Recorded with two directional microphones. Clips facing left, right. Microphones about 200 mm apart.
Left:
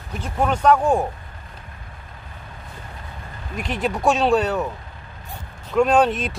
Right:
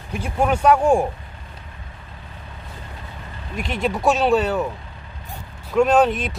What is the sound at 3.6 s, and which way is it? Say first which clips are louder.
Speech: right 1 dB; centre (ahead or behind).